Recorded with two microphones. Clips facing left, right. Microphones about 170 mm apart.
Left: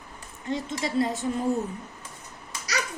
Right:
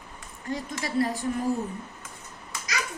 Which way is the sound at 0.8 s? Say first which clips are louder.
Even; 20° left (ahead or behind).